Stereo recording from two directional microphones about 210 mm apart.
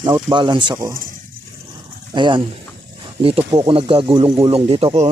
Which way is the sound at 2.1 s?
20° right (ahead or behind).